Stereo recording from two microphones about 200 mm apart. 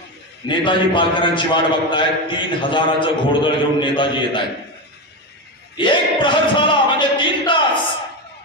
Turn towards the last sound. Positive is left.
turn(degrees=25)  # may be behind; listen again after turning